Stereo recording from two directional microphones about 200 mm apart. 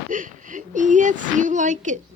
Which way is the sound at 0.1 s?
40° right (ahead or behind).